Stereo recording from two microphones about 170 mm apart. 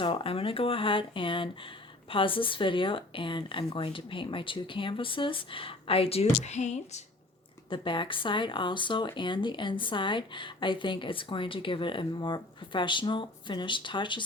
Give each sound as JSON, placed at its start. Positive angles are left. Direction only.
{"t": 0.0, "sound": "speech", "side_deg": 30}
{"t": 7.7, "sound": "speech", "side_deg": 30}